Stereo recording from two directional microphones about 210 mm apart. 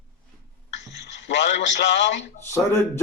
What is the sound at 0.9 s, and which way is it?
A man's voice, 55° left (ahead or behind).